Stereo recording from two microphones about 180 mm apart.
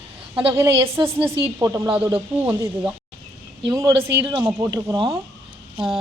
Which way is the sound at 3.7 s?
15° right (ahead or behind).